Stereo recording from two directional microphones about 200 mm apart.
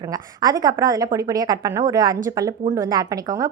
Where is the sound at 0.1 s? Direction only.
20° right (ahead or behind).